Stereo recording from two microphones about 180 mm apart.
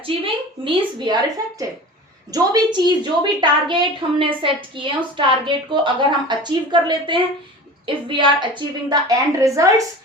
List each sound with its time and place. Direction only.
0.3 s a woman's voice: 25° right (ahead or behind)